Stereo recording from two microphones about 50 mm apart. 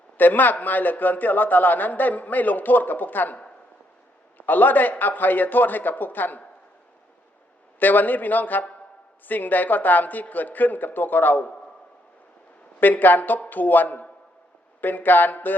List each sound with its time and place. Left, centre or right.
0.2 s a man's voice: left
4.4 s a man's voice: left
7.8 s a man's voice: left
12.8 s a man's voice: left